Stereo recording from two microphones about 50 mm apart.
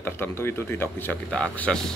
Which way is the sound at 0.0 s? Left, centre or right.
Left.